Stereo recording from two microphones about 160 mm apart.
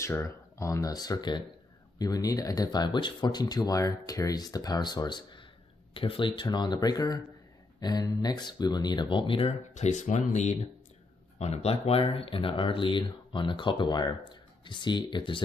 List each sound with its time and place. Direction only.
0.0 s speech: 15° left (ahead or behind)